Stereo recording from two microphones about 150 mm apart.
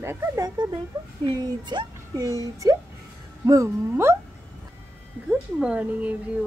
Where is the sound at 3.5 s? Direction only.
20° right (ahead or behind).